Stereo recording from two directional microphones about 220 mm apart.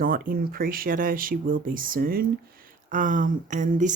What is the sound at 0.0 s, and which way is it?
A woman's voice, 40° right (ahead or behind).